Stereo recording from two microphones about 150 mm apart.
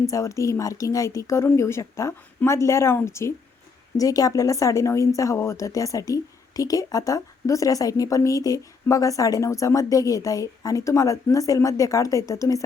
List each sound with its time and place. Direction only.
0.0 s a woman's voice: 20° left (ahead or behind)